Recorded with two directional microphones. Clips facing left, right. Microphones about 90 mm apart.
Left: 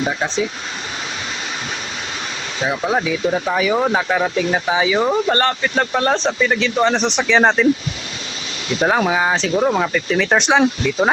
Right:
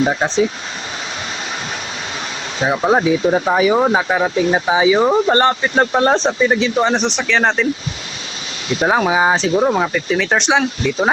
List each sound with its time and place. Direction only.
0.1 s speech: 30° right (ahead or behind)
2.6 s speech: 30° right (ahead or behind)
6.7 s speech: 10° right (ahead or behind)
7.2 s speech: 15° left (ahead or behind)
8.8 s speech: 5° right (ahead or behind)